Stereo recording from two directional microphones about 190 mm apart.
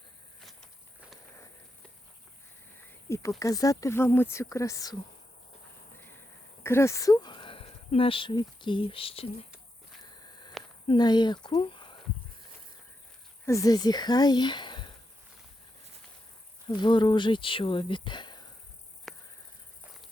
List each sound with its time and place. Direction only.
3.1 s speech: 15° left (ahead or behind)
6.0 s speech: 10° left (ahead or behind); by 9.5 s 30° left (ahead or behind)
10.0 s a sound: 20° left (ahead or behind)
10.8 s speech: 20° left (ahead or behind)
13.4 s speech: 15° left (ahead or behind)
16.6 s speech: 25° left (ahead or behind)
19.1 s a sound: centre (ahead or behind)